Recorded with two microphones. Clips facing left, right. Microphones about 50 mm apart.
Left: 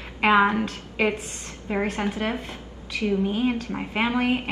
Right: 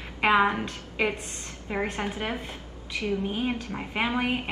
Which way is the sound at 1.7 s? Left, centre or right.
Centre.